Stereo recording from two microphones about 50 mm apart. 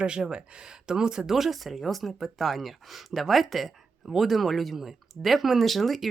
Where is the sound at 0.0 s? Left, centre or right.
Centre.